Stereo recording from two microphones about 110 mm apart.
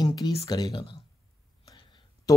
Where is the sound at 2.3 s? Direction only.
35° left (ahead or behind).